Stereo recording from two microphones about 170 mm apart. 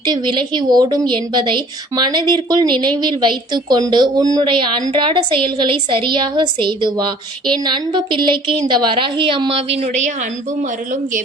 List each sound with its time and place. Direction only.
0.0 s a woman's voice: 25° right (ahead or behind)
9.8 s a woman's voice: 45° right (ahead or behind)